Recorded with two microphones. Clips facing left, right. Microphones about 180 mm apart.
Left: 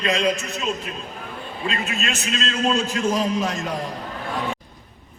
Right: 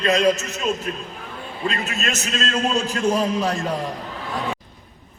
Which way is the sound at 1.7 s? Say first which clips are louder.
Right 1 dB; 40° right (ahead or behind).